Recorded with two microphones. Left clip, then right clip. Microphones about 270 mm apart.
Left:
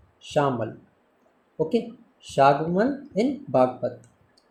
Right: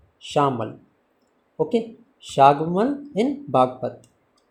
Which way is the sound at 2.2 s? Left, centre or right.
Centre.